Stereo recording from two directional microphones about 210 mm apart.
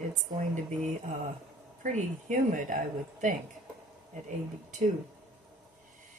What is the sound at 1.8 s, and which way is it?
Speech, 35° right (ahead or behind).